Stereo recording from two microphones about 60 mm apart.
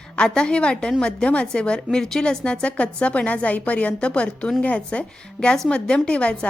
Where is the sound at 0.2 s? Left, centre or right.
Centre.